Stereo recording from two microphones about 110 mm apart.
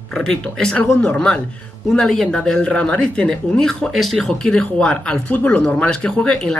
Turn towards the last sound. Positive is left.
turn(degrees=10)  # may be behind; listen again after turning